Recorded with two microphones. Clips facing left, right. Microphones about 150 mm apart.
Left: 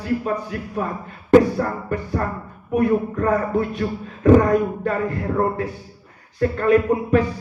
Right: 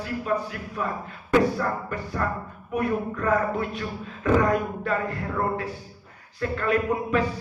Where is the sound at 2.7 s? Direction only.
45° left (ahead or behind).